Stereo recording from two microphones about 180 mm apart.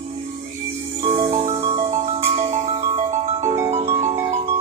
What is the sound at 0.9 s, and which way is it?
Music, 30° right (ahead or behind).